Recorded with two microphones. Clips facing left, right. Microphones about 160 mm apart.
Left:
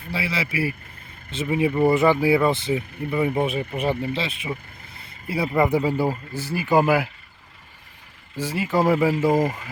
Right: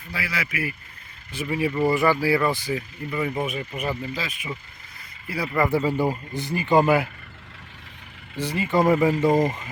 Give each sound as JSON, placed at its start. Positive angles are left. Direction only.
{"t": 0.1, "sound": "speech", "side_deg": 30}
{"t": 8.4, "sound": "speech", "side_deg": 5}